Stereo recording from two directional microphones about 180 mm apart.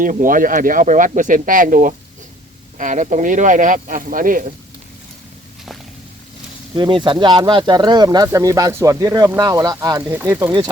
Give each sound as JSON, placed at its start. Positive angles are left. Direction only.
{"t": 0.0, "sound": "speech", "side_deg": -50}
{"t": 6.7, "sound": "speech", "side_deg": -25}